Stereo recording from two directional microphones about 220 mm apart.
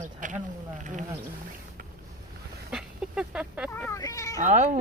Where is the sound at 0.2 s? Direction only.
35° right (ahead or behind).